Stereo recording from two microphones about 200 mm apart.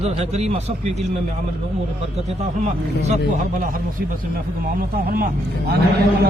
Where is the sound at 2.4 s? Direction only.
35° right (ahead or behind).